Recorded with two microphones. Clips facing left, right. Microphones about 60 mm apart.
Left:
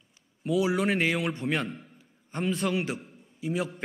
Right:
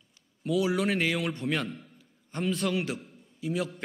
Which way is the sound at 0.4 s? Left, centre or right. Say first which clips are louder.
Left 1 dB; centre.